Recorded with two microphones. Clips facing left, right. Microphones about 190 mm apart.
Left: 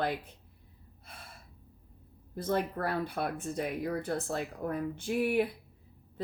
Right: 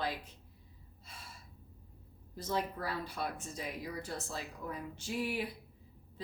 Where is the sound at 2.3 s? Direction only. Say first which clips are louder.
Left 5 dB; 55° left (ahead or behind).